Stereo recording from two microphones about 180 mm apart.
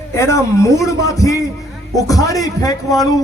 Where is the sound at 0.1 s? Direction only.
15° left (ahead or behind).